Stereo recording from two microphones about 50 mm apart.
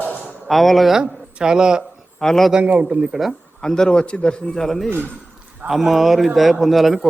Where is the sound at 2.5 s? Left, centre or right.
Right.